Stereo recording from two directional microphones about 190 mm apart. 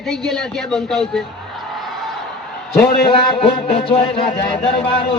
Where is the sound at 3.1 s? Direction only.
30° left (ahead or behind).